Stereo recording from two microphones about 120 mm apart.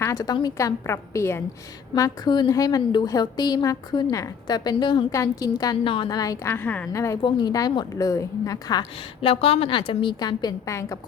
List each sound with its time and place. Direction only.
0.0 s a woman's voice: 30° left (ahead or behind)
2.0 s a woman's voice: 30° left (ahead or behind)
5.8 s a woman's voice: 45° left (ahead or behind); by 7.2 s 25° left (ahead or behind)
7.2 s a woman's voice: 40° left (ahead or behind)
9.2 s a woman's voice: 55° left (ahead or behind); by 10.8 s 35° left (ahead or behind)